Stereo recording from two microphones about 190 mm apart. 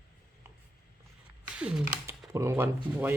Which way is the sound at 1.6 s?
5° right (ahead or behind).